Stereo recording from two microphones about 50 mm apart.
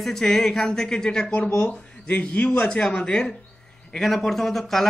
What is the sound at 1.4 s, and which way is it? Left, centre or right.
Speech, left.